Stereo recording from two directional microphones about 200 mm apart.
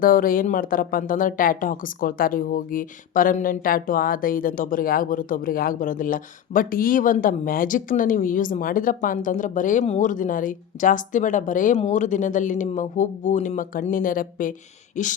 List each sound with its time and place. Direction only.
0.0 s speech: 45° left (ahead or behind)